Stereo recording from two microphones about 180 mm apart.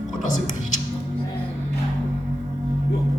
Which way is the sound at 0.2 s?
45° left (ahead or behind).